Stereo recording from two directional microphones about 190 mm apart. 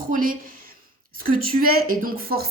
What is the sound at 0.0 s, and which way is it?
A woman's voice, 45° right (ahead or behind).